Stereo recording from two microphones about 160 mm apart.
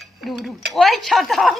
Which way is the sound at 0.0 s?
Centre (ahead or behind).